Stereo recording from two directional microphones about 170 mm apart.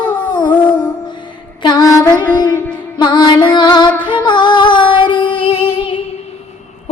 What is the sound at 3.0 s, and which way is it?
Music, 25° left (ahead or behind).